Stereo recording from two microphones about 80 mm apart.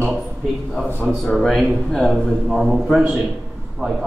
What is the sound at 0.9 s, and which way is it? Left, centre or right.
Speech, right.